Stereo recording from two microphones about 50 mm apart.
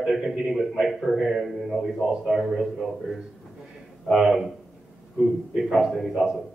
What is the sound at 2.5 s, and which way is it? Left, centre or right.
A man's voice, centre.